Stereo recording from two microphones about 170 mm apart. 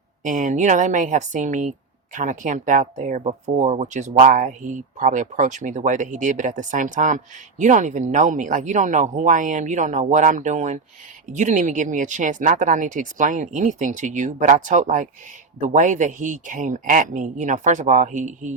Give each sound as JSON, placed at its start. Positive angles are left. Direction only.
{"t": 0.3, "sound": "speech", "side_deg": -50}